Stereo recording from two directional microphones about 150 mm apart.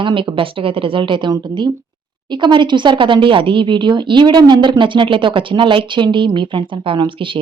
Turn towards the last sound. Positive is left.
turn(degrees=-35)  # may be behind; listen again after turning